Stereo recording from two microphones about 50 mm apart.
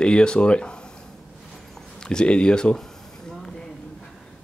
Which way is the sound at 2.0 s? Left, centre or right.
Centre.